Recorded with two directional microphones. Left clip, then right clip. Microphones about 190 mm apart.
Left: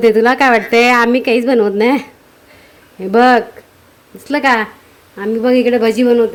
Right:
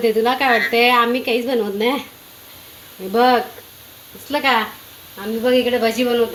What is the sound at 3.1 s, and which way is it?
A woman's voice, 65° left (ahead or behind).